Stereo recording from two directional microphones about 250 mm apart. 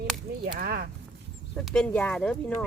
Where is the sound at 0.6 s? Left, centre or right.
Right.